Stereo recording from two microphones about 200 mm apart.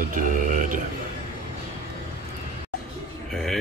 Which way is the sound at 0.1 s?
40° right (ahead or behind).